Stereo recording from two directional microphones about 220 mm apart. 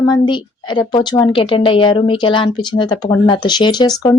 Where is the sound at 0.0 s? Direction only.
20° left (ahead or behind).